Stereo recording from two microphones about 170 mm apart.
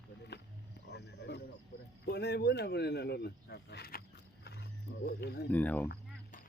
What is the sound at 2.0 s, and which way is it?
Speech, 75° left (ahead or behind).